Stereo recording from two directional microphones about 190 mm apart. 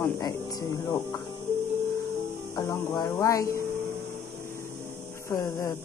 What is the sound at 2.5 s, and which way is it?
Speech, 20° left (ahead or behind).